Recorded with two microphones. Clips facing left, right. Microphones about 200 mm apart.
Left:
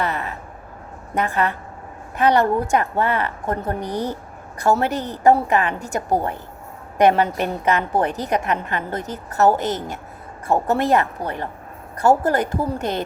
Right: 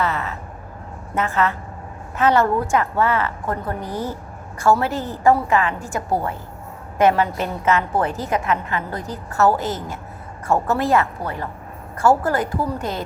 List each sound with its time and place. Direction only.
0.0 s a woman's voice: 15° left (ahead or behind)